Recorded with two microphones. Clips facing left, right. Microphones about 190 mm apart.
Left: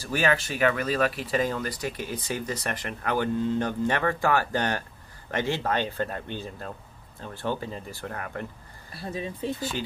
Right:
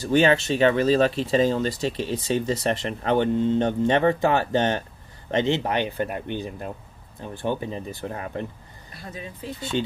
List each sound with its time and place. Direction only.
0.0 s speech: 25° right (ahead or behind)
8.9 s speech: 25° left (ahead or behind)
9.6 s speech: 25° right (ahead or behind)